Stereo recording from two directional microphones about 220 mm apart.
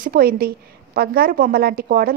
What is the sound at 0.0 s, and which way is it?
A woman's voice, 40° right (ahead or behind).